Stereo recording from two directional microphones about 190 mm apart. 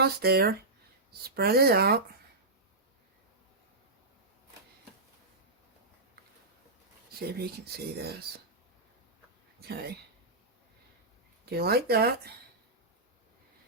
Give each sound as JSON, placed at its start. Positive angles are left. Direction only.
{"t": 0.0, "sound": "speech", "side_deg": -55}
{"t": 7.2, "sound": "speech", "side_deg": -55}
{"t": 9.6, "sound": "a sound", "side_deg": -55}
{"t": 11.4, "sound": "speech", "side_deg": -55}